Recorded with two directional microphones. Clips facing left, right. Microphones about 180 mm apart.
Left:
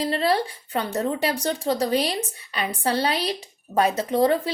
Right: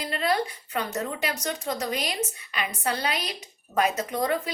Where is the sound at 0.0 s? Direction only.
30° left (ahead or behind).